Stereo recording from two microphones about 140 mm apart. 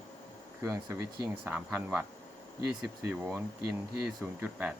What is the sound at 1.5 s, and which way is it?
Speech, 10° right (ahead or behind).